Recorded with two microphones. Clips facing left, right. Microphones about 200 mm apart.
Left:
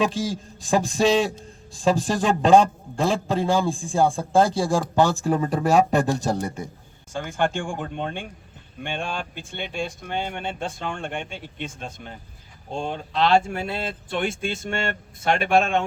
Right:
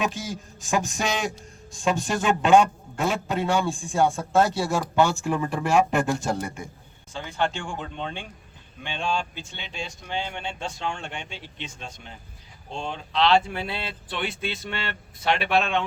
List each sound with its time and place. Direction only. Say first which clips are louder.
0.0 s a man's voice: left 5 dB; 30° left (ahead or behind)
7.1 s speech: left 3 dB; 50° left (ahead or behind)